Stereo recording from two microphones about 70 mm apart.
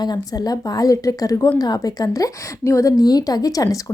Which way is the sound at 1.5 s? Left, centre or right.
Left.